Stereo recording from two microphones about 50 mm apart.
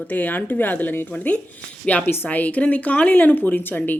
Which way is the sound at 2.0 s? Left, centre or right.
Left.